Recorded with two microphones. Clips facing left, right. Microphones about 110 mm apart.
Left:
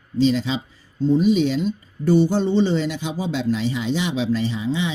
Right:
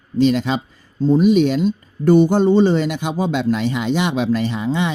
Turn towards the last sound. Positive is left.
turn(degrees=-60)  # may be behind; listen again after turning